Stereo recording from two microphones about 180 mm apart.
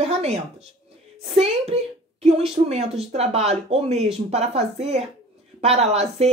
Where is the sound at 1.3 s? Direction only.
35° right (ahead or behind).